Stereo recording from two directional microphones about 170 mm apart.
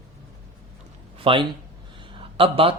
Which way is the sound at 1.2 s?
30° right (ahead or behind).